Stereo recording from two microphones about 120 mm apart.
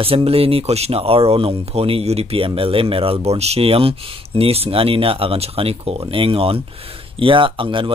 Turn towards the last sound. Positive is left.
turn(degrees=-45)  # may be behind; listen again after turning